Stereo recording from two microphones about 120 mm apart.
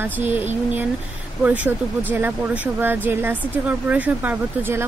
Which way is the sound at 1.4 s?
10° right (ahead or behind).